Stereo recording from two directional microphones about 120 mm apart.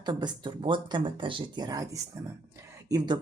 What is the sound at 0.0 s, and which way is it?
Speech, 35° right (ahead or behind).